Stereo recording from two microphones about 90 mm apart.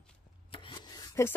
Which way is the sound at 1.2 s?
30° left (ahead or behind).